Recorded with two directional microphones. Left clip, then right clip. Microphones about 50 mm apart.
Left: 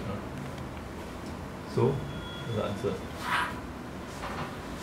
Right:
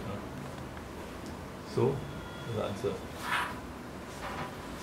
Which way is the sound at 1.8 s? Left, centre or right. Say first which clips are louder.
Left 2 dB; right.